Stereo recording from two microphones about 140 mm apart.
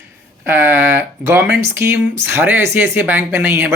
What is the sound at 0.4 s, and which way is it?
Speech, 15° right (ahead or behind).